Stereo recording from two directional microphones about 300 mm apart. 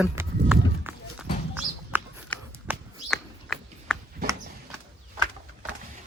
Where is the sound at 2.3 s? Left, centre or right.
Centre.